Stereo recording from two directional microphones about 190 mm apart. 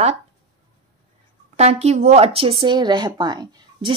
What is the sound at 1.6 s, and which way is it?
A woman's voice, 35° right (ahead or behind).